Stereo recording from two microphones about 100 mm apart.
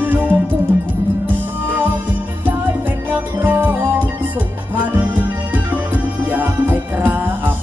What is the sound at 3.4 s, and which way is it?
Music, 20° right (ahead or behind).